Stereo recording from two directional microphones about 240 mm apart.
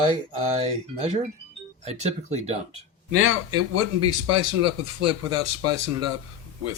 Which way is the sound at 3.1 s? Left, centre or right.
Right.